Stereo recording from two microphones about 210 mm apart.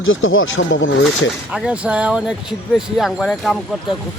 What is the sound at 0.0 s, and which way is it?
Speech, 70° left (ahead or behind).